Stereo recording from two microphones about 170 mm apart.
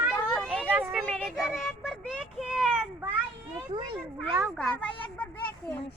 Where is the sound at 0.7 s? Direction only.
10° right (ahead or behind).